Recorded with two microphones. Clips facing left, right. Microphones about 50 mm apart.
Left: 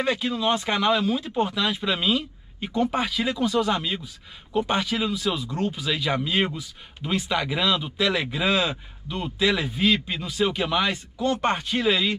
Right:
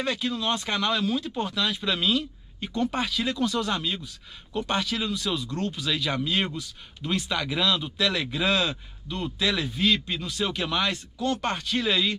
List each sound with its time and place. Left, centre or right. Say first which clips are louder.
0.0 s speech: left 4 dB; centre